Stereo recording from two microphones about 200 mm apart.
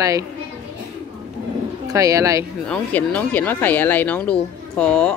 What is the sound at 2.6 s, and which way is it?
Speech, 5° left (ahead or behind).